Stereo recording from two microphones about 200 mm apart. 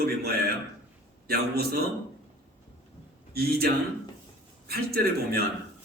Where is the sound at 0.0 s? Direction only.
50° right (ahead or behind).